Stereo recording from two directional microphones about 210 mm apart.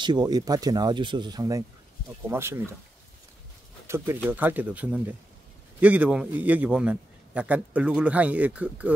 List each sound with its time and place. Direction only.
0.0 s a man's voice: 20° right (ahead or behind)
3.8 s a man's voice: 10° right (ahead or behind)